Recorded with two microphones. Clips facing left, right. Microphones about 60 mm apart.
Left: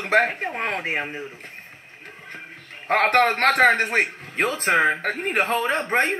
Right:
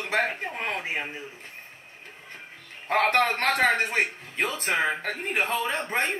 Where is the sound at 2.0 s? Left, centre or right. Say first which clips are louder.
Left 6 dB; left.